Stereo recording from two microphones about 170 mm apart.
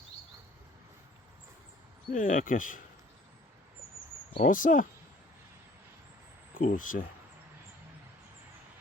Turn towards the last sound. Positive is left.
turn(degrees=55)  # may be behind; listen again after turning